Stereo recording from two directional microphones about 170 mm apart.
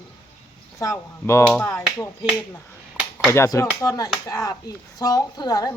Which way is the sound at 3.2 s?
15° left (ahead or behind).